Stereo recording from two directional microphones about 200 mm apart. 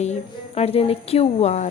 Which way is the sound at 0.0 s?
35° left (ahead or behind).